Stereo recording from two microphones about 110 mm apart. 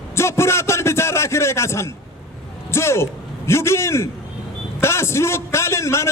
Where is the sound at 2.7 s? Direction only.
25° left (ahead or behind).